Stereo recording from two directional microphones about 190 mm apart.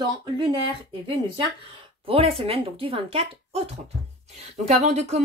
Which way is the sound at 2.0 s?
30° right (ahead or behind).